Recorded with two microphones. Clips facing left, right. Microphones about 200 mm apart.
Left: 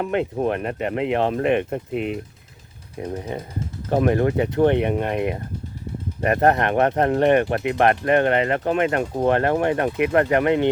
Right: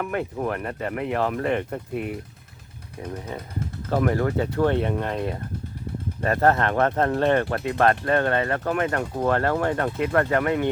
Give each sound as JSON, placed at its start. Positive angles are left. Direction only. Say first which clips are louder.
{"t": 0.0, "sound": "speech", "louder": "left 5 dB", "side_deg": 25}
{"t": 3.8, "sound": "speech", "louder": "left 4 dB", "side_deg": 20}